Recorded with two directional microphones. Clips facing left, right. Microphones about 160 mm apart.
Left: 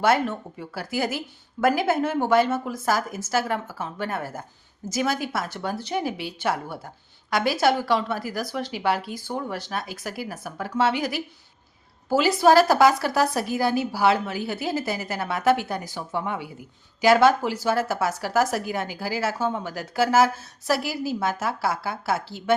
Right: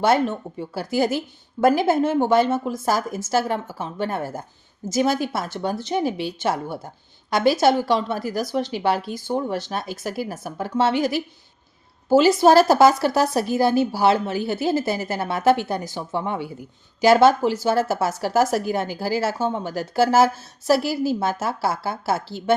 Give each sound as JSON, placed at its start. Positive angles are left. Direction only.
{"t": 0.0, "sound": "a woman's voice", "side_deg": -25}